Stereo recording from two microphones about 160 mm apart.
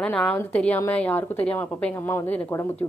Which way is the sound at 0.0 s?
5° left (ahead or behind).